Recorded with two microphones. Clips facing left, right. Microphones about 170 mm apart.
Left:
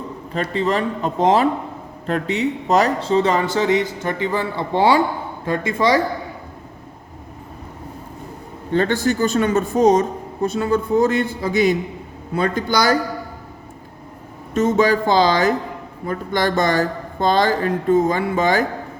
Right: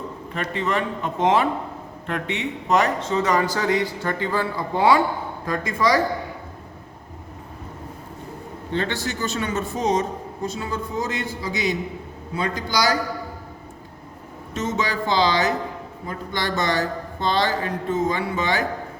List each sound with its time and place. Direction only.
0.3 s a man's voice: 35° left (ahead or behind)
8.7 s a man's voice: 50° left (ahead or behind)
14.5 s a man's voice: 50° left (ahead or behind)